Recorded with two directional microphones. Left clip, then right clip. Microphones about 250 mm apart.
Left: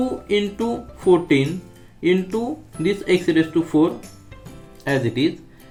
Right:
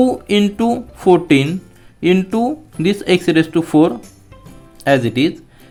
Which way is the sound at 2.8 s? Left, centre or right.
Right.